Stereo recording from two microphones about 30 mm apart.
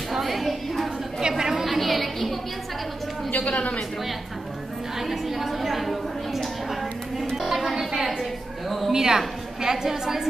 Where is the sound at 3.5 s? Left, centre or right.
Left.